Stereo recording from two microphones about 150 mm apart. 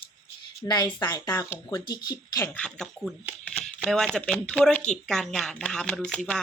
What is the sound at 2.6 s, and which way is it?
A woman's voice, 5° left (ahead or behind).